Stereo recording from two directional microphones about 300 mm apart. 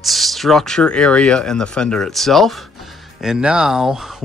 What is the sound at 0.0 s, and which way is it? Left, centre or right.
Speech, centre.